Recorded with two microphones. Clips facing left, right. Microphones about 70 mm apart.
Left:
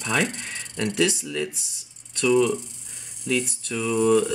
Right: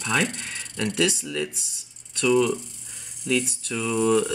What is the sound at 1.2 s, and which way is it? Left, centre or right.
Speech, centre.